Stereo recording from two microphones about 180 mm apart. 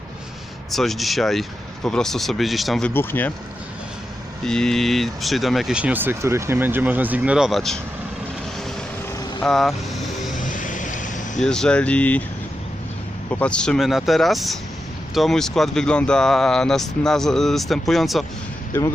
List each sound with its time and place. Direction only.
0.7 s speech: centre (ahead or behind)
4.4 s speech: 5° left (ahead or behind)
9.4 s speech: centre (ahead or behind)
10.3 s vehicle: 45° left (ahead or behind)
11.4 s speech: 5° left (ahead or behind)
13.3 s speech: 5° left (ahead or behind)